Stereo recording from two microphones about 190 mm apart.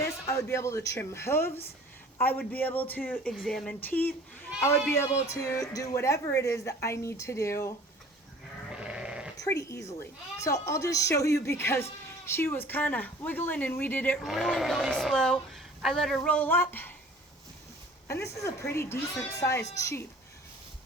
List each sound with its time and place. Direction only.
0.0 s speech: 15° left (ahead or behind)
5.3 s speech: 15° left (ahead or behind)
8.7 s sheep: 5° right (ahead or behind)
9.4 s speech: 15° left (ahead or behind)
14.2 s speech: centre (ahead or behind)
18.1 s speech: 15° left (ahead or behind)